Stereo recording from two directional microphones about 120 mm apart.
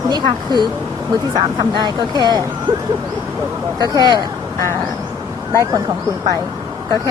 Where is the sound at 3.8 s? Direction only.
35° right (ahead or behind).